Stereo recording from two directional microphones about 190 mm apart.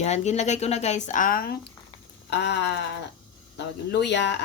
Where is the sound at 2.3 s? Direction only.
65° left (ahead or behind).